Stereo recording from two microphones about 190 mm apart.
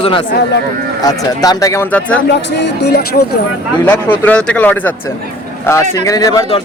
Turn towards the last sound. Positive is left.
turn(degrees=20)  # may be behind; listen again after turning